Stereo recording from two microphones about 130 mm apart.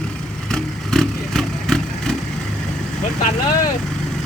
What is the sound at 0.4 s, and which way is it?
Vehicle, 5° left (ahead or behind).